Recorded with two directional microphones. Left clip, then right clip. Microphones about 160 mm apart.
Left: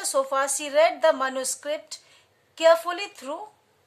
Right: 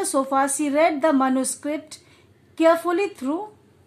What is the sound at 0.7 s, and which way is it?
Speech, 20° right (ahead or behind).